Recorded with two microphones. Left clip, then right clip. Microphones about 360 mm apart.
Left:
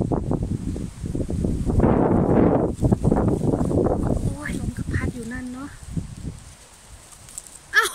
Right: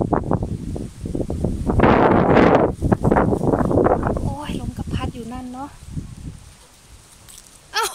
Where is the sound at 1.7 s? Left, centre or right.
Right.